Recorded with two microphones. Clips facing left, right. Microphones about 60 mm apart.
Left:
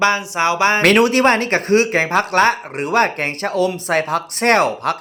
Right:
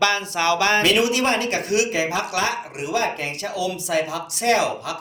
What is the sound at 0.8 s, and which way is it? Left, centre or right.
Speech, left.